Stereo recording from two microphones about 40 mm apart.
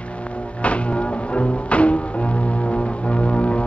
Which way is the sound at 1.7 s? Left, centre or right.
Left.